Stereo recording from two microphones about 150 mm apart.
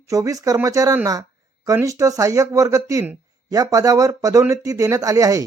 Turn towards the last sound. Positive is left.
turn(degrees=-20)  # may be behind; listen again after turning